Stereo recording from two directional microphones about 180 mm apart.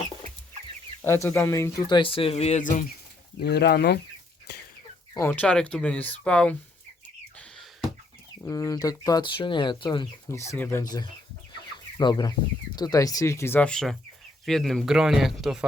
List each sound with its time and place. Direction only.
1.0 s speech: 15° left (ahead or behind)
2.0 s speech: 30° left (ahead or behind); by 2.8 s 45° left (ahead or behind)
3.4 s speech: 65° left (ahead or behind)
4.5 s chicken: 65° left (ahead or behind)
5.3 s speech: 5° left (ahead or behind)
7.3 s a sound: centre (ahead or behind)
8.4 s speech: 20° left (ahead or behind)
10.5 s speech: 15° left (ahead or behind)